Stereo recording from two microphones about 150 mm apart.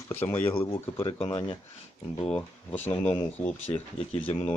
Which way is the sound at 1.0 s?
35° left (ahead or behind).